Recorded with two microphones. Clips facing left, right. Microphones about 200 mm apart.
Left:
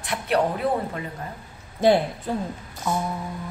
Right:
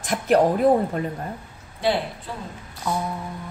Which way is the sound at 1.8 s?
45° left (ahead or behind).